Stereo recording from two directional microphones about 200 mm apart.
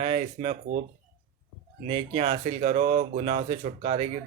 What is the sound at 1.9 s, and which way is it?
Speech, 30° right (ahead or behind).